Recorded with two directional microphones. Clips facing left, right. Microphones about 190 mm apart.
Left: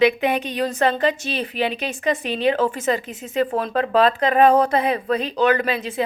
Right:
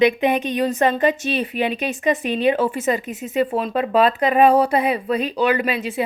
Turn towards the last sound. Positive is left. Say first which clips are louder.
# even
turn(degrees=-15)  # may be behind; listen again after turning